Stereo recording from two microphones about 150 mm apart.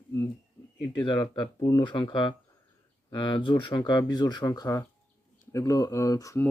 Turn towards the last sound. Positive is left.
turn(degrees=20)  # may be behind; listen again after turning